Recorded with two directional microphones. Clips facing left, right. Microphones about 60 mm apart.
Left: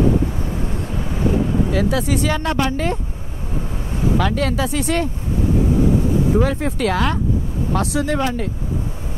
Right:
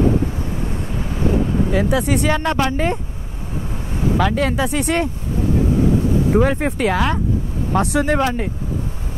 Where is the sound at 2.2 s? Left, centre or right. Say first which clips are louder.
Right 2 dB; right.